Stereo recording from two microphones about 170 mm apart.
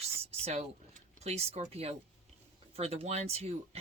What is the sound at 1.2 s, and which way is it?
Speech, 40° right (ahead or behind).